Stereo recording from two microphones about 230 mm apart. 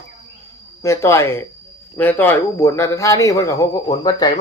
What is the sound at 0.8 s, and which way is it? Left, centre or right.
Speech, centre.